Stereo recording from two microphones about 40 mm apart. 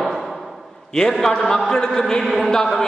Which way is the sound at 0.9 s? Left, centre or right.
Centre.